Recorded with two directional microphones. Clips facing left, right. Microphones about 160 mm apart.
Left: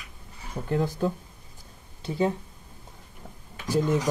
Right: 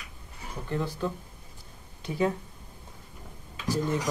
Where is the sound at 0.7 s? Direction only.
45° left (ahead or behind).